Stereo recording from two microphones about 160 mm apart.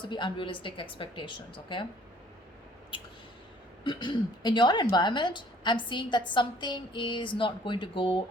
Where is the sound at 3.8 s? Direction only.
30° left (ahead or behind).